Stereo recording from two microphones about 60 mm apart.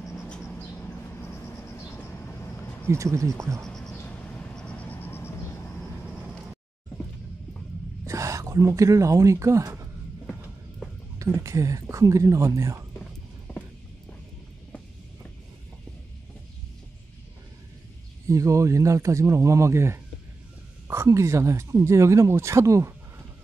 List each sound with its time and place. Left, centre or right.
0.0 s mouse: centre
1.2 s vehicle: left
2.0 s vehicle: left
2.9 s speech: right
3.4 s speech: centre
3.9 s vehicle: left
8.1 s speech: right
11.4 s speech: right
13.5 s a sound: centre
18.3 s speech: right